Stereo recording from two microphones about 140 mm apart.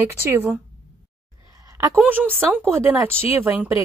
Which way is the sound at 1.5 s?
25° right (ahead or behind).